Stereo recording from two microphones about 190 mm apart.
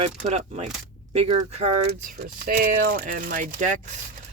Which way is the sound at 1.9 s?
45° right (ahead or behind).